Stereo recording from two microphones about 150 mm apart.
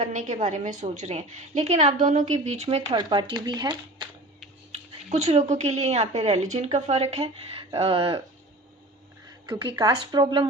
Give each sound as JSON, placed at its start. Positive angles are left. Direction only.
{"t": 0.1, "sound": "a woman's voice", "side_deg": -55}
{"t": 2.9, "sound": "speech", "side_deg": -30}
{"t": 5.0, "sound": "a woman's voice", "side_deg": -45}
{"t": 9.5, "sound": "speech", "side_deg": -30}